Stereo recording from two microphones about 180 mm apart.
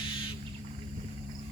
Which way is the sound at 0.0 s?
30° left (ahead or behind).